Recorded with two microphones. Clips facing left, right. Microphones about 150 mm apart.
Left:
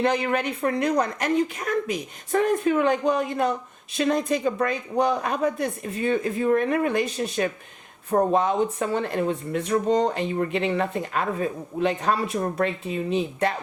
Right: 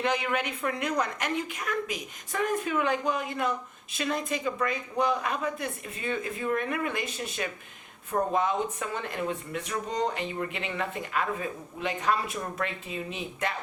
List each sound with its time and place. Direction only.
0.0 s a woman's voice: 35° left (ahead or behind)